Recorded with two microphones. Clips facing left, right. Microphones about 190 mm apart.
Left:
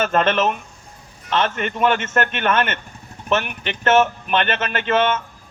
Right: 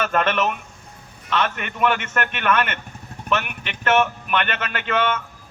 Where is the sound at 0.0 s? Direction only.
30° left (ahead or behind).